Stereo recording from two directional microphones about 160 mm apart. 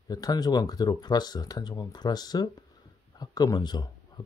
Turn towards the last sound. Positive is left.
turn(degrees=25)  # may be behind; listen again after turning